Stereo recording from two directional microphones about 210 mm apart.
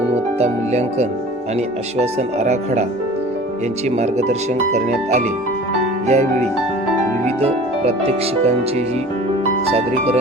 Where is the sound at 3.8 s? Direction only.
30° right (ahead or behind).